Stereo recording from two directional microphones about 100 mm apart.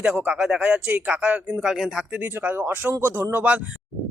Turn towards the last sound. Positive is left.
turn(degrees=-15)  # may be behind; listen again after turning